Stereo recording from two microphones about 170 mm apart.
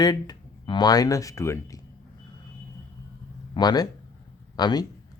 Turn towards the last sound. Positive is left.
turn(degrees=25)  # may be behind; listen again after turning